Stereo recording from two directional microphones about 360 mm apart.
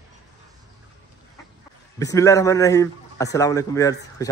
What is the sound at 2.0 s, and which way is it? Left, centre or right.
A man's voice, centre.